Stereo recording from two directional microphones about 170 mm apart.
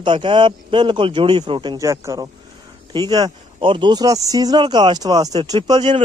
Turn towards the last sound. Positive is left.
turn(degrees=-25)  # may be behind; listen again after turning